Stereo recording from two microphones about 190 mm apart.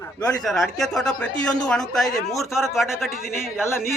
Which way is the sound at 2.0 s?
20° left (ahead or behind).